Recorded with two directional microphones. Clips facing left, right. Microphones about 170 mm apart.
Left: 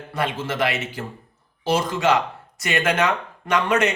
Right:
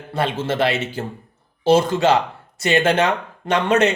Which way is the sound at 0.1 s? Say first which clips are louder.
Right 4 dB; 30° right (ahead or behind).